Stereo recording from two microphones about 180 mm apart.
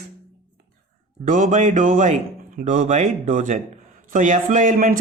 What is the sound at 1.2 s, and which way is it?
Speech, 45° right (ahead or behind).